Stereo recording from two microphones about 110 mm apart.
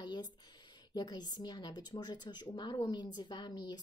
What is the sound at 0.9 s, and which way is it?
A woman's voice, 40° left (ahead or behind).